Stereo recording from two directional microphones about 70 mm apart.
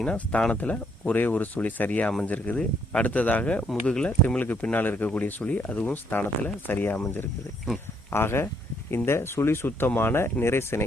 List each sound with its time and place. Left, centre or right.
0.0 s speech: centre
4.4 s speech: left
8.1 s speech: left